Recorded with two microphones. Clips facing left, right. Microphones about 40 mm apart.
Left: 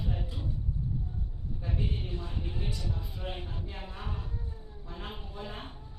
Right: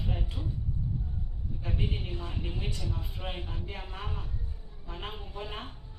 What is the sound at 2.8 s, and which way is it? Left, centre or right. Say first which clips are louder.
Speech: even; right.